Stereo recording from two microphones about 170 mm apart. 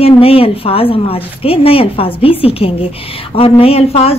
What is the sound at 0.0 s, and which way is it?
A woman's voice, 35° left (ahead or behind).